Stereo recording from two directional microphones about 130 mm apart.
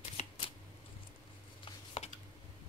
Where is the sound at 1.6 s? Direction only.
45° left (ahead or behind).